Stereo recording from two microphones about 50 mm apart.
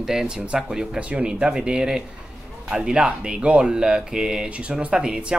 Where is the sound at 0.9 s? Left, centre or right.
Right.